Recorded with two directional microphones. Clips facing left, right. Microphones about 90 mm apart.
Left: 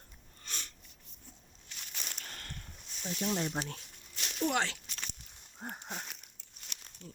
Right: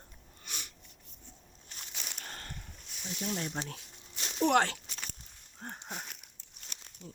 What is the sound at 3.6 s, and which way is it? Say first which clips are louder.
Speech: left 1 dB; 5° left (ahead or behind).